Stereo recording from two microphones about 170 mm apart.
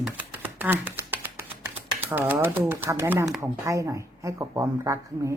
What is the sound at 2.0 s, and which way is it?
Speech, 10° right (ahead or behind).